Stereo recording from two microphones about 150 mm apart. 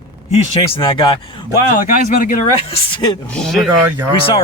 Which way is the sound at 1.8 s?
60° left (ahead or behind).